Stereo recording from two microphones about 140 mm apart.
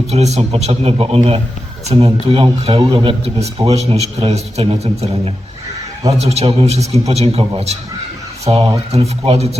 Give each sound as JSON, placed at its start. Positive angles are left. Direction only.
{"t": 0.1, "sound": "a man's voice", "side_deg": -50}